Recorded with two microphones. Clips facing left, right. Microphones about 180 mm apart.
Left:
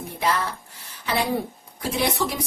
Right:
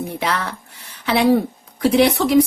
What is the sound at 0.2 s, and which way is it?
Speech, 85° right.